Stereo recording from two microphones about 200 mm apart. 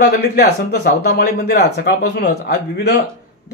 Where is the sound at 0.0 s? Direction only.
55° left (ahead or behind).